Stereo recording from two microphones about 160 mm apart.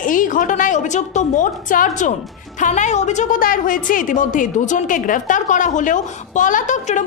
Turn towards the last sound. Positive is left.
turn(degrees=50)  # may be behind; listen again after turning